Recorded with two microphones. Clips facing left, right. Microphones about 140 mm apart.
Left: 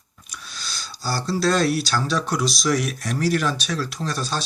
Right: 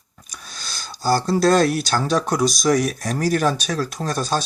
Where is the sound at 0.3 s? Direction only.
45° right (ahead or behind).